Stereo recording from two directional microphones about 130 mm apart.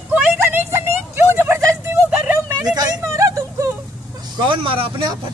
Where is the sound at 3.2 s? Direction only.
25° right (ahead or behind).